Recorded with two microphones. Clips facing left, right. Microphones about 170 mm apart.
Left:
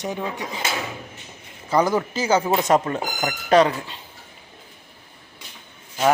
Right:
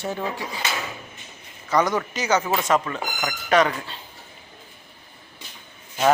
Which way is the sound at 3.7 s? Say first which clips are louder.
Left 1 dB; 15° left (ahead or behind).